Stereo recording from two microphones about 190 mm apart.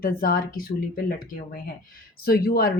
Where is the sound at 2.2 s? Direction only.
55° left (ahead or behind).